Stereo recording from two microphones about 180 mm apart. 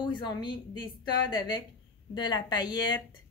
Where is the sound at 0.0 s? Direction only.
25° left (ahead or behind).